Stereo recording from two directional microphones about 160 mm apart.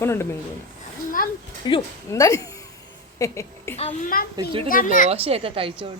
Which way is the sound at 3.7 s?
40° left (ahead or behind).